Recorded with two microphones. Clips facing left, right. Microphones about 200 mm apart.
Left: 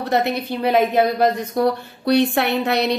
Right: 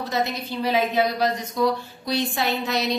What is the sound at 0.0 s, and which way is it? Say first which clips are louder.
A woman's voice: left 6 dB; 60° left (ahead or behind).